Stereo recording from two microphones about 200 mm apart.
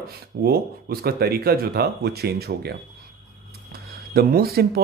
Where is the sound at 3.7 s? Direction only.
50° right (ahead or behind).